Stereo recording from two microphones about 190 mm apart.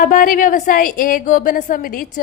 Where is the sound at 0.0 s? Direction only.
45° left (ahead or behind).